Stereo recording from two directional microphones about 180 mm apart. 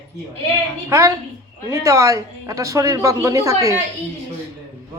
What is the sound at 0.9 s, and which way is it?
A man's voice, 15° right (ahead or behind).